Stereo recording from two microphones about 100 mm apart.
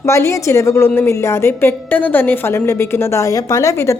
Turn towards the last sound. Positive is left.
turn(degrees=30)  # may be behind; listen again after turning